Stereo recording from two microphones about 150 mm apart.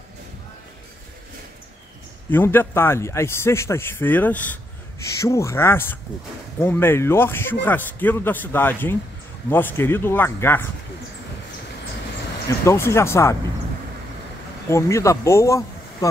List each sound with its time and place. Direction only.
2.3 s a man's voice: 15° left (ahead or behind)
12.6 s a man's voice: 15° left (ahead or behind)
14.7 s speech: 20° left (ahead or behind)